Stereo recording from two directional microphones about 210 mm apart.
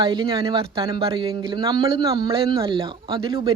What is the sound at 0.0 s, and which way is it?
Speech, 25° right (ahead or behind).